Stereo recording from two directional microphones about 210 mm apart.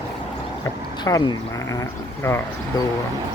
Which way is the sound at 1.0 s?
20° left (ahead or behind).